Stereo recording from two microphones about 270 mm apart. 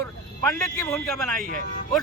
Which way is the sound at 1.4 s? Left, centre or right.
Right.